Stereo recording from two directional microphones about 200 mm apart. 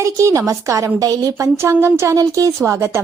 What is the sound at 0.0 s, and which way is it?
A woman's voice, 15° right (ahead or behind).